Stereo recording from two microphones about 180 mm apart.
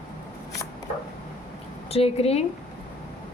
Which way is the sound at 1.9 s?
35° left (ahead or behind).